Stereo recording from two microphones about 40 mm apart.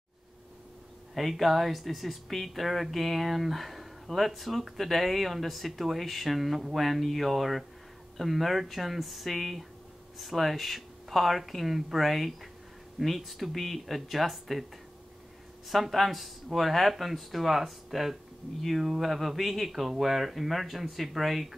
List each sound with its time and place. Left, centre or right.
1.1 s speech: centre
15.7 s speech: centre